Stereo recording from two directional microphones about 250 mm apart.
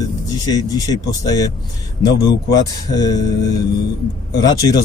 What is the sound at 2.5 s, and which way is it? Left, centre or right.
Speech, centre.